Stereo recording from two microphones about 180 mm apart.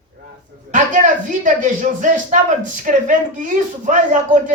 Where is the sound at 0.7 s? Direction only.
45° right (ahead or behind).